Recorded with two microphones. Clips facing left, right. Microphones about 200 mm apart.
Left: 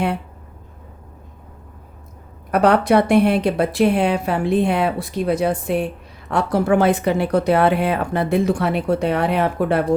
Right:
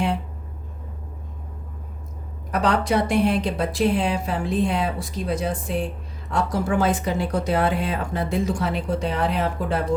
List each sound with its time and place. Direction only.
2.5 s speech: 60° left (ahead or behind)